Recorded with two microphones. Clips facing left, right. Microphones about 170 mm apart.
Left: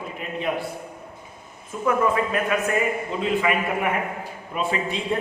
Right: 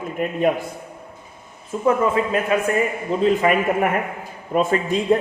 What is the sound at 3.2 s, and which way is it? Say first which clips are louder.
A man's voice: right 6 dB; 45° right (ahead or behind).